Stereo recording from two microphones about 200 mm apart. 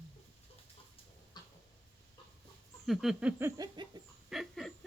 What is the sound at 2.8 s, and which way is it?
Speech, centre (ahead or behind).